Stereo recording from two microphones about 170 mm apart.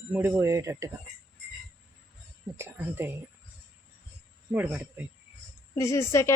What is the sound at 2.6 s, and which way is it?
Speech, 15° right (ahead or behind).